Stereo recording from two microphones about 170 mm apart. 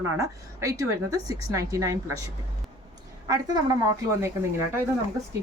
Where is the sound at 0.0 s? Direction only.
20° right (ahead or behind).